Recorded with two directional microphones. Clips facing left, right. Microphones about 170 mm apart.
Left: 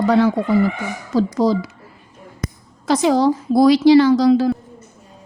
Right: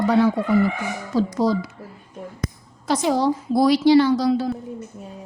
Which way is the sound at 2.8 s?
90° left.